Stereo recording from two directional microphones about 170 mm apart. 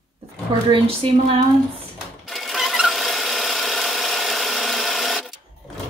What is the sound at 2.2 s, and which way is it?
Sewing machine, centre (ahead or behind).